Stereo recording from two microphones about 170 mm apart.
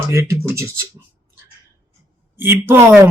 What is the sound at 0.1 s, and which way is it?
Speech, 15° right (ahead or behind).